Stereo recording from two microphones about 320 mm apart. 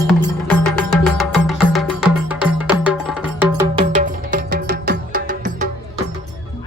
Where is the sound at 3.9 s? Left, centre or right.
Right.